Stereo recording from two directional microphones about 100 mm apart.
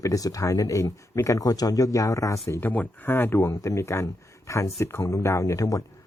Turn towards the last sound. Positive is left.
turn(degrees=35)  # may be behind; listen again after turning